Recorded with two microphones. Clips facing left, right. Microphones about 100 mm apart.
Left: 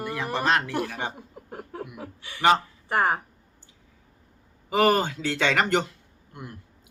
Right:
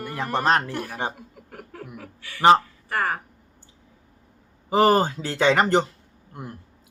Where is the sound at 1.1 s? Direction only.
25° left (ahead or behind).